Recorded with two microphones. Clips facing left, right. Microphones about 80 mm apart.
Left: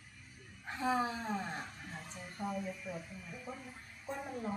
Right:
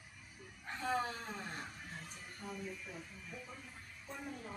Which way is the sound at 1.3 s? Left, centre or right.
Centre.